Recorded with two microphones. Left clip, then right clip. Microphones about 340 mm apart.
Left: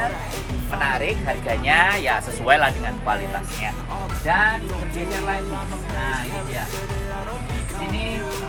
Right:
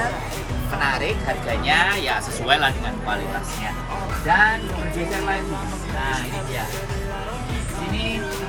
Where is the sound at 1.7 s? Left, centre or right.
Centre.